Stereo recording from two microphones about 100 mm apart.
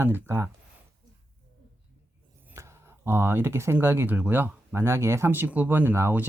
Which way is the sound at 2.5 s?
25° right (ahead or behind).